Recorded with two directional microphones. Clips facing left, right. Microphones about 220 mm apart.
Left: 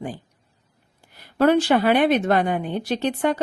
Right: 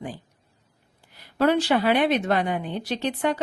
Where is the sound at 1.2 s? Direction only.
50° left (ahead or behind).